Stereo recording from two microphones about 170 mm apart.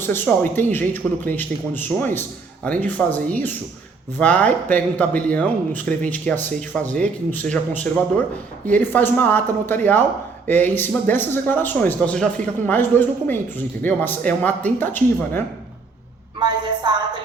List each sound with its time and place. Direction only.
0.0 s speech: 10° left (ahead or behind)
8.9 s speech: 10° left (ahead or behind)
16.4 s a sound: 25° right (ahead or behind)